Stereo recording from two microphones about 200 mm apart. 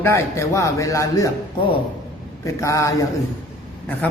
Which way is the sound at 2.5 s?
15° left (ahead or behind).